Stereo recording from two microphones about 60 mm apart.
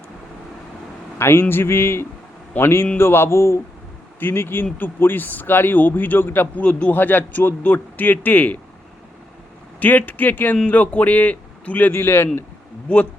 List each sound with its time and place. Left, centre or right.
1.2 s a man's voice: left
6.7 s a man's voice: centre
6.9 s a man's voice: left
9.8 s a man's voice: left